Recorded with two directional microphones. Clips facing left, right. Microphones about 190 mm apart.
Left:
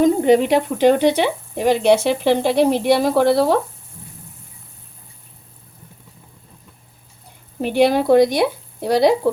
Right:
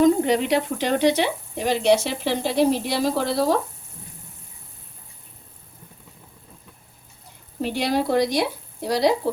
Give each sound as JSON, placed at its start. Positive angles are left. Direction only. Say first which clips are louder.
{"t": 0.0, "sound": "speech", "louder": "left 4 dB", "side_deg": 55}
{"t": 7.6, "sound": "speech", "louder": "left 7 dB", "side_deg": 60}